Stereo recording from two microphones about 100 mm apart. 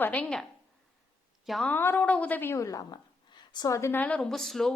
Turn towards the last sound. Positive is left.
turn(degrees=5)  # may be behind; listen again after turning